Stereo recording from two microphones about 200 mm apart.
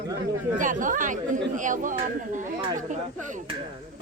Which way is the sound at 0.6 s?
40° right (ahead or behind).